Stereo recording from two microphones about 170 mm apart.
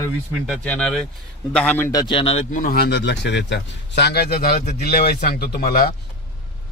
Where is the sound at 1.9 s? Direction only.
25° left (ahead or behind).